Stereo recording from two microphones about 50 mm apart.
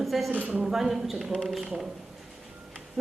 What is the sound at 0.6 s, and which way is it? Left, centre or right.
Speech, centre.